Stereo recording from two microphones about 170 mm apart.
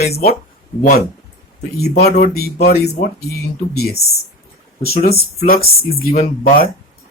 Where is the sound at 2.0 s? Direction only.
45° left (ahead or behind).